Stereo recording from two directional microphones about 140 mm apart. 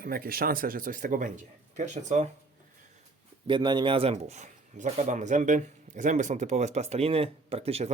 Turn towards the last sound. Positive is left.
turn(degrees=-45)  # may be behind; listen again after turning